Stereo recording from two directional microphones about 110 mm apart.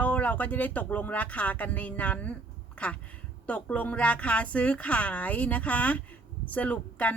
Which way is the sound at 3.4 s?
10° left (ahead or behind).